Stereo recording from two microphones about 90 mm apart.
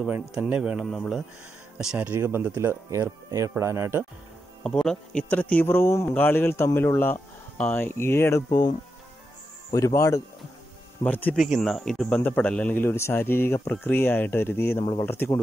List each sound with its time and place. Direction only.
0.4 s a man's voice: 15° right (ahead or behind)
0.8 s speech: centre (ahead or behind)
2.0 s speech: 25° right (ahead or behind)
4.6 s speech: 5° left (ahead or behind)
5.3 s speech: 15° left (ahead or behind)
9.7 s speech: 35° left (ahead or behind)
11.1 s speech: 20° left (ahead or behind)
11.3 s speech: centre (ahead or behind)
12.2 s speech: 15° left (ahead or behind)